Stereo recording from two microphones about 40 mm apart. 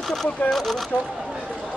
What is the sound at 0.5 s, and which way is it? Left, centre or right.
Speech, centre.